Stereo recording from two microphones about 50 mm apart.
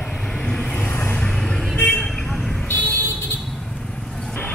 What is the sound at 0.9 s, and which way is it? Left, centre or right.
Vehicle, left.